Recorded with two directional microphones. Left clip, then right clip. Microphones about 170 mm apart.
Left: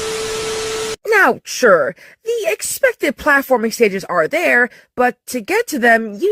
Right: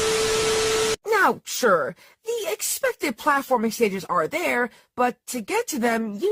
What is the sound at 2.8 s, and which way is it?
Speech, 25° left (ahead or behind).